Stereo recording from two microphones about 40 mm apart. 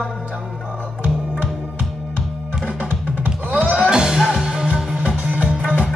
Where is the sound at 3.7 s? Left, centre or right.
Right.